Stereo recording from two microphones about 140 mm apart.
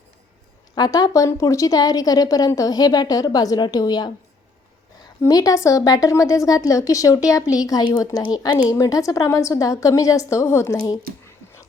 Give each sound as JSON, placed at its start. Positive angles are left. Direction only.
{"t": 0.8, "sound": "a woman's voice", "side_deg": 30}
{"t": 5.2, "sound": "a woman's voice", "side_deg": 25}